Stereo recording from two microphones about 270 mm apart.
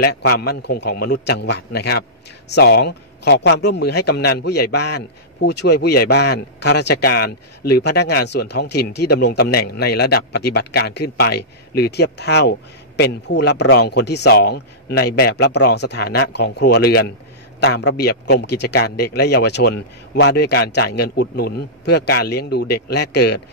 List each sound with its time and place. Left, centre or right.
0.0 s a man's voice: left